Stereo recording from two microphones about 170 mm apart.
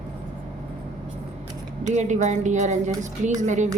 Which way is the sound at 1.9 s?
45° right (ahead or behind).